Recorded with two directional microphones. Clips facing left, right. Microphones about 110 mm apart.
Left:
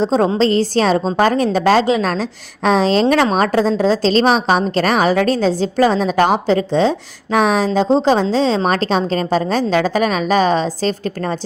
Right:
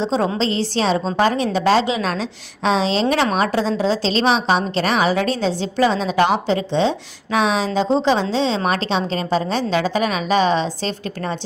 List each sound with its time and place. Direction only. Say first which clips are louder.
0.0 s a woman's voice: left 5 dB; 45° left (ahead or behind)